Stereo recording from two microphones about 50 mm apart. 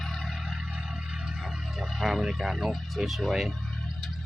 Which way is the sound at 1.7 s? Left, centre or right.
Centre.